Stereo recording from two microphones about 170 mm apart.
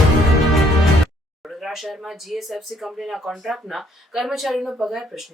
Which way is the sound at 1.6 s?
Centre (ahead or behind).